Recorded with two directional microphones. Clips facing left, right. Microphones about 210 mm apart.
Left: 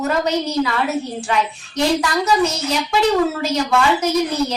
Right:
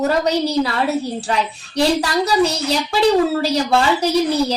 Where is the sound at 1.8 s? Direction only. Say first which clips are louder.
Right 1 dB; 35° right (ahead or behind).